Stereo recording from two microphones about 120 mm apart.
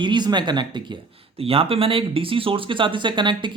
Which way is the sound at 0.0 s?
40° right (ahead or behind).